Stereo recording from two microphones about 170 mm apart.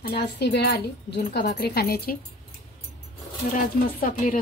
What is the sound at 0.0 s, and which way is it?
A woman's voice, 75° left (ahead or behind).